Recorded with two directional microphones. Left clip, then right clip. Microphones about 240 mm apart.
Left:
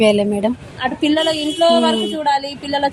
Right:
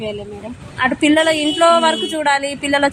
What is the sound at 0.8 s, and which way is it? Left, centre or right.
A woman's voice, right.